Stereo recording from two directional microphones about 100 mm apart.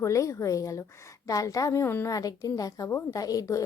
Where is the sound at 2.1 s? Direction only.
35° left (ahead or behind).